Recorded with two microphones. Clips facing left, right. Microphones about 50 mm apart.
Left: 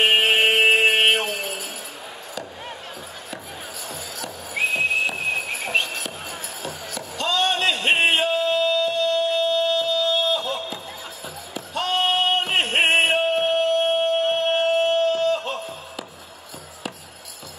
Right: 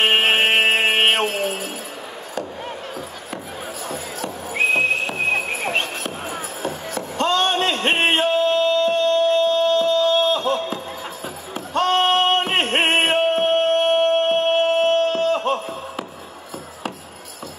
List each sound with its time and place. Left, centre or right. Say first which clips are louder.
0.6 s chant: even; right
0.9 s mantra: right 1 dB; right
1.3 s music: right 5 dB; right
3.9 s whistle: right 5 dB; right
11.5 s a sound: right 6 dB; right
12.6 s music: right 1 dB; right